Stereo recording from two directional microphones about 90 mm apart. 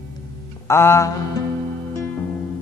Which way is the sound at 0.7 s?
30° left (ahead or behind).